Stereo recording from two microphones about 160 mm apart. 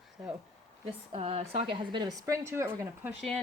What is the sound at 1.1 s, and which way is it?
A woman's voice, 40° right (ahead or behind).